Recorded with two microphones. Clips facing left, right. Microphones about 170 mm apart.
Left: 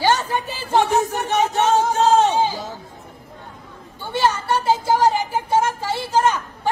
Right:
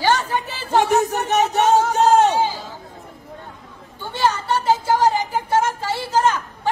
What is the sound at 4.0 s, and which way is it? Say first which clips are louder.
A woman's voice: left 1 dB; 10° left (ahead or behind).